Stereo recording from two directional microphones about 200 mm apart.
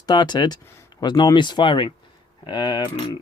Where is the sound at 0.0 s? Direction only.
20° left (ahead or behind).